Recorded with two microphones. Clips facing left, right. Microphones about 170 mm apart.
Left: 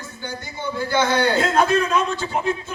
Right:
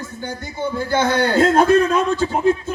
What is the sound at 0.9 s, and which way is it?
A man's voice, 50° right (ahead or behind).